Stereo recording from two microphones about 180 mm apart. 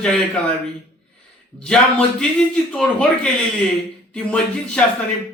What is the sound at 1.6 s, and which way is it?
A man's voice, 5° left (ahead or behind).